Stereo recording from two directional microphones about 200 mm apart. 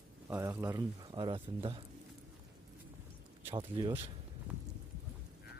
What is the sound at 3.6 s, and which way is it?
Speech, 25° right (ahead or behind).